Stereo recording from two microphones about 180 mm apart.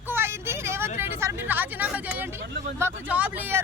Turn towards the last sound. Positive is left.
turn(degrees=-10)  # may be behind; listen again after turning